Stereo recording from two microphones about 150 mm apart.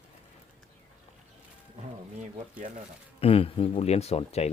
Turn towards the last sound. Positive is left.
turn(degrees=45)  # may be behind; listen again after turning